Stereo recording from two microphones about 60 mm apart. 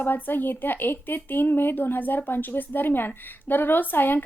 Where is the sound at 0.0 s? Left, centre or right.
Left.